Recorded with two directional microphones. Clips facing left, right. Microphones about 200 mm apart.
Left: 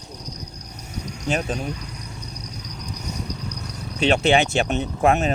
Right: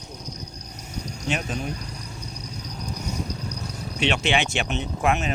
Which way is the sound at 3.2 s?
25° right (ahead or behind).